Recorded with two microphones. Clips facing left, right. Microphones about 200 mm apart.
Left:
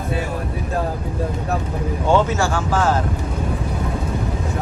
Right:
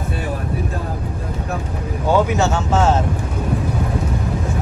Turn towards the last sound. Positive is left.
turn(degrees=-25)  # may be behind; listen again after turning